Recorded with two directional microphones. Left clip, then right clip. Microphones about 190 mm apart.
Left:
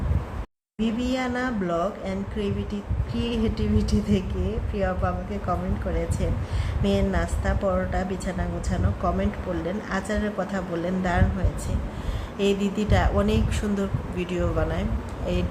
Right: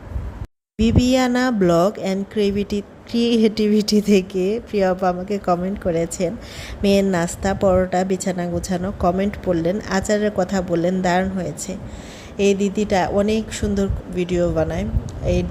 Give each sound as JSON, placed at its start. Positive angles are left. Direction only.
{"t": 0.8, "sound": "speech", "side_deg": -45}
{"t": 12.4, "sound": "speech", "side_deg": -35}